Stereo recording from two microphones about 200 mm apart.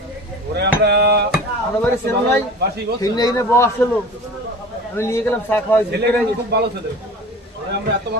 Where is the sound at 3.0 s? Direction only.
20° left (ahead or behind).